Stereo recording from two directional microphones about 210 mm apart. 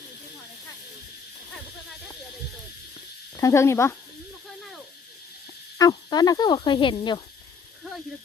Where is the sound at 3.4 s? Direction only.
15° left (ahead or behind).